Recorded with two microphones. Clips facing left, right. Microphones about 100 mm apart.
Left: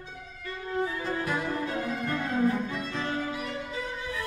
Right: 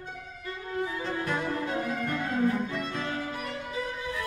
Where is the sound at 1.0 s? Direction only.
5° left (ahead or behind).